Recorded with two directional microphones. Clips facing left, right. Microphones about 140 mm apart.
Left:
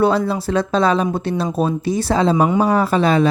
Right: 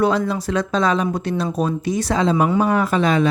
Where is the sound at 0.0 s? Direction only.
30° left (ahead or behind).